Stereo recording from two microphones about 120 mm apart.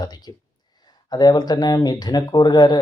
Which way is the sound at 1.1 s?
35° left (ahead or behind).